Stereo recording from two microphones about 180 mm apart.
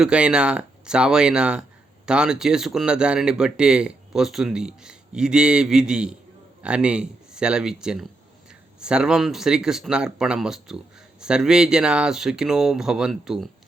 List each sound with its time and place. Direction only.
0.0 s speech: 5° right (ahead or behind)